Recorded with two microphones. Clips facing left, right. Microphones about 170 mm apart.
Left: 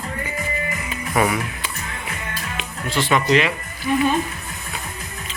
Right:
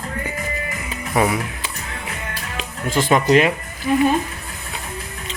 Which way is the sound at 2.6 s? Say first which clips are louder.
Right 3 dB; 45° right (ahead or behind).